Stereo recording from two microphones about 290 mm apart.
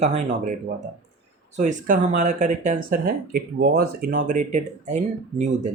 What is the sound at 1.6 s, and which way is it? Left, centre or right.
Speech, right.